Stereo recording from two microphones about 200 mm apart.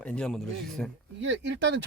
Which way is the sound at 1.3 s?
65° right (ahead or behind).